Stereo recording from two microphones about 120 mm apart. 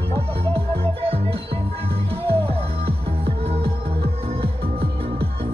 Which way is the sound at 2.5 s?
55° right (ahead or behind).